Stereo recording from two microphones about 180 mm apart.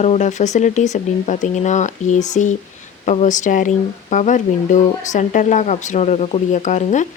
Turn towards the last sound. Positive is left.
turn(degrees=40)  # may be behind; listen again after turning